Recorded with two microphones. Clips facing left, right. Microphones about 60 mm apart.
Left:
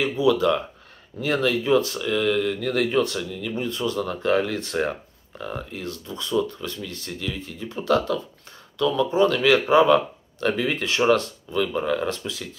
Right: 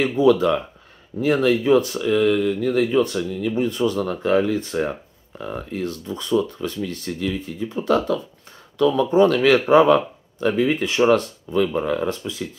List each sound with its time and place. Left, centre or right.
0.0 s speech: right
1.2 s speech: right
4.7 s speech: left
5.4 s speech: right
5.7 s speech: right
6.0 s speech: right
9.9 s speech: centre